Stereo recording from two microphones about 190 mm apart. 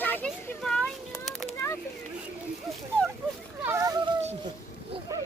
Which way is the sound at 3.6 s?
15° right (ahead or behind).